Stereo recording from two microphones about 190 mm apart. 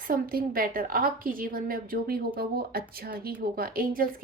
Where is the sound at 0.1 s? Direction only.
50° right (ahead or behind).